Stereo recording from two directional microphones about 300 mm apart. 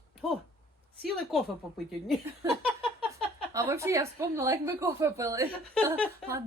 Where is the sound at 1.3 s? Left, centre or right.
Centre.